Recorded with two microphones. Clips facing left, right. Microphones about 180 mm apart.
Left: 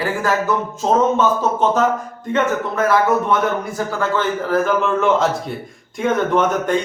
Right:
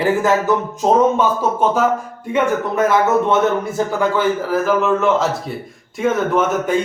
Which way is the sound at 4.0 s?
5° right (ahead or behind).